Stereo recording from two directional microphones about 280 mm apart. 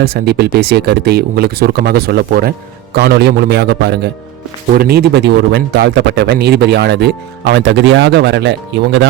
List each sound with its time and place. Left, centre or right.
0.0 s speech: right